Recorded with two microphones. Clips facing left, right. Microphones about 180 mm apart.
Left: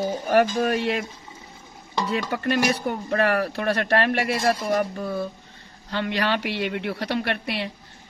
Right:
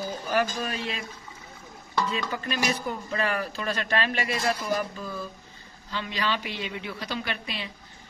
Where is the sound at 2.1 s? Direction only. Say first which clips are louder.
Left 7 dB; 65° left (ahead or behind).